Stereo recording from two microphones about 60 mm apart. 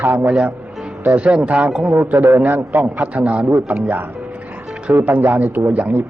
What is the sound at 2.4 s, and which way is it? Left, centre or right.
Speech, right.